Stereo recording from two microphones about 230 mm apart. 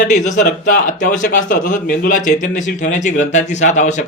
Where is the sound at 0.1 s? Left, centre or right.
Left.